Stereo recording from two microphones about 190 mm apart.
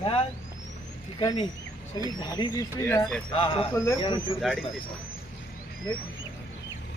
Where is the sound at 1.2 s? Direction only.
20° left (ahead or behind).